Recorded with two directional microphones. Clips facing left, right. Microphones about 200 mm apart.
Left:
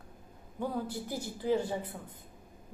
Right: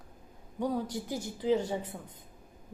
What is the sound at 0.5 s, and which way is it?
A man's voice, 15° right (ahead or behind).